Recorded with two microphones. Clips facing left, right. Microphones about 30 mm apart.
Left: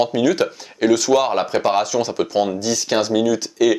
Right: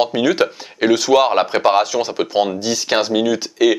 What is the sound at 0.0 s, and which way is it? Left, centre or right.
Speech, right.